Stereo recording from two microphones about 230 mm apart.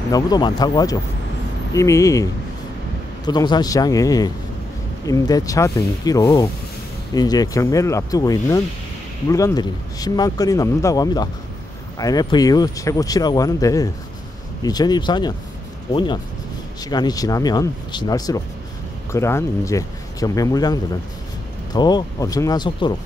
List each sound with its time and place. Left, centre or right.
0.1 s speech: centre
3.3 s speech: centre